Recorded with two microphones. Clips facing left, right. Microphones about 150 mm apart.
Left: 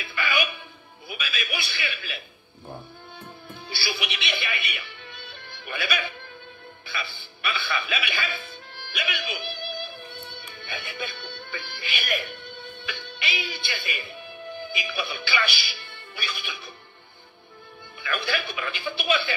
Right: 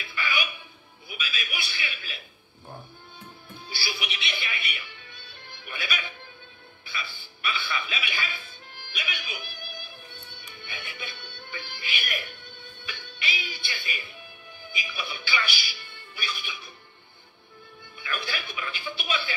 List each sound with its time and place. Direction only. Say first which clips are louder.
0.0 s music: left 4 dB; 70° left (ahead or behind)
3.6 s speech: left 4 dB; 75° left (ahead or behind)
10.2 s music: left 5 dB; 75° left (ahead or behind)
13.0 s speech: left 2 dB; 70° left (ahead or behind)
17.9 s speech: left 5 dB; 70° left (ahead or behind)